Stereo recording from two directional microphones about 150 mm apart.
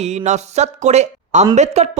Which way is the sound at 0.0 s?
45° right (ahead or behind).